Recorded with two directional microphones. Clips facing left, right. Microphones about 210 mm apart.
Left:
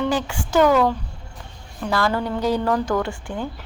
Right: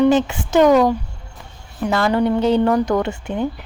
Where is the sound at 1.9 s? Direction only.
20° right (ahead or behind).